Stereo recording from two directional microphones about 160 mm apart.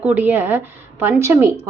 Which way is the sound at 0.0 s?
10° right (ahead or behind).